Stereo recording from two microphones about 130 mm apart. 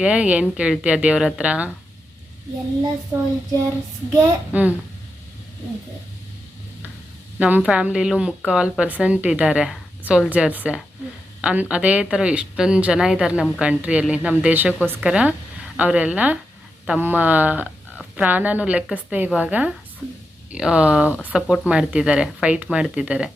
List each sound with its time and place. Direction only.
0.0 s speech: 10° right (ahead or behind)
4.1 s speech: 15° right (ahead or behind)
7.3 s speech: 10° right (ahead or behind)